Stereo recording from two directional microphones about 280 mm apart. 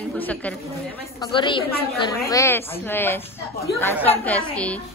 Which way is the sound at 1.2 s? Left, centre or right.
Centre.